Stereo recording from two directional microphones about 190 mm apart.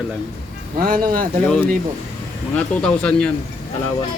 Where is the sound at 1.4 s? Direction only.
5° left (ahead or behind).